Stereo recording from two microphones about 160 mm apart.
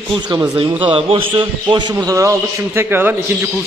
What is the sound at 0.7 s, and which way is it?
A man's voice, 35° right (ahead or behind).